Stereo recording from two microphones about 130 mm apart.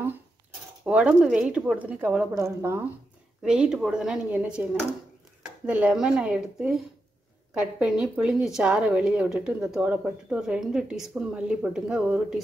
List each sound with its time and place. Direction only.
0.8 s a woman's voice: 10° right (ahead or behind)
2.3 s speech: 20° right (ahead or behind)
3.4 s a woman's voice: 5° right (ahead or behind)
5.7 s a woman's voice: 10° right (ahead or behind)